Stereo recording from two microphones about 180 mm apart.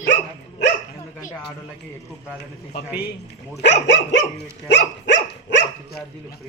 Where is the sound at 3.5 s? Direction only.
90° left.